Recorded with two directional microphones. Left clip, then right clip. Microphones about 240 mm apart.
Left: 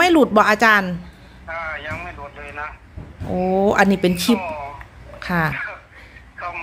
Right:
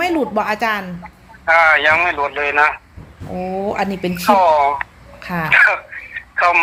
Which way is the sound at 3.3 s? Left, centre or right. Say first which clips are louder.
Left 4 dB; left.